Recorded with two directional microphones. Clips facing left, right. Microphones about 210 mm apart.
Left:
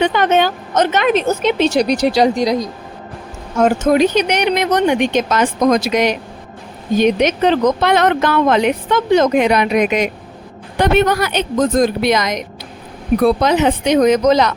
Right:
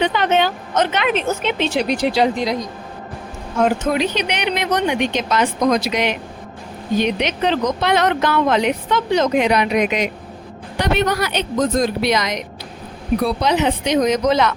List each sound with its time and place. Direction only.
0.0 s a woman's voice: 45° left (ahead or behind)